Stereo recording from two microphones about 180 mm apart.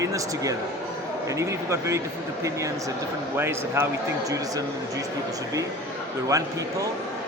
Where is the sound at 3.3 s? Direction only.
15° right (ahead or behind).